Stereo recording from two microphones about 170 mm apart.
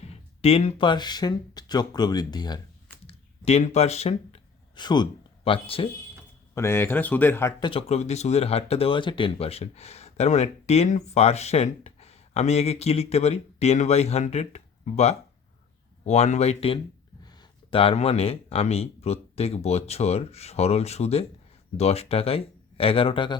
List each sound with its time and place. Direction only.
0.0 s speech: 35° left (ahead or behind)
3.1 s speech: 40° left (ahead or behind)
4.7 s a man's voice: 25° left (ahead or behind)
6.5 s speech: 15° left (ahead or behind)
7.6 s speech: 35° left (ahead or behind)